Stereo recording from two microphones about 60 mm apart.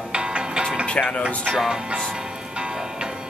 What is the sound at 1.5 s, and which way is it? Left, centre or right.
Speech, centre.